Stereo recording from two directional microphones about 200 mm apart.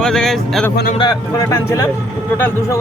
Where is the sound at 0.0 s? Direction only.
Centre (ahead or behind).